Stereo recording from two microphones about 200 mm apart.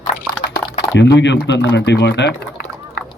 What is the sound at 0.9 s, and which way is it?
A man's voice, 60° left (ahead or behind).